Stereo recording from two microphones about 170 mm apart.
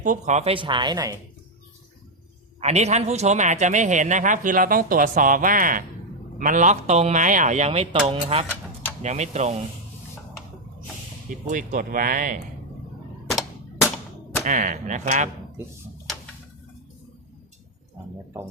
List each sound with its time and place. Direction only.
0.0 s speech: 45° right (ahead or behind); by 1.1 s 25° right (ahead or behind)
2.6 s a man's voice: 40° right (ahead or behind)
11.3 s a man's voice: 50° right (ahead or behind)
14.4 s a man's voice: 50° right (ahead or behind)